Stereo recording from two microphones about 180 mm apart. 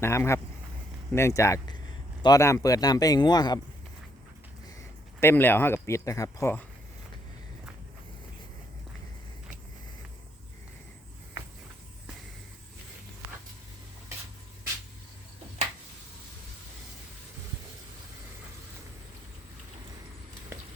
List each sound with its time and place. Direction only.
0.0 s speech: 15° left (ahead or behind)
5.2 s speech: 10° left (ahead or behind)
20.5 s clip-clop: 15° right (ahead or behind)